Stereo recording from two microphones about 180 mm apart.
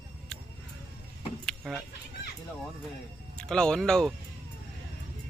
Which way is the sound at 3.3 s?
5° left (ahead or behind).